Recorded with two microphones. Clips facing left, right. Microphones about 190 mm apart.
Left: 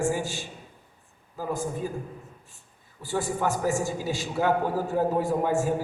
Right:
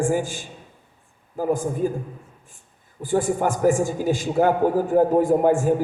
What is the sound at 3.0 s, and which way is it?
A man's voice, 50° right (ahead or behind).